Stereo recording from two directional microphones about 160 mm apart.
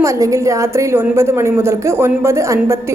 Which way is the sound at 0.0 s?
20° right (ahead or behind).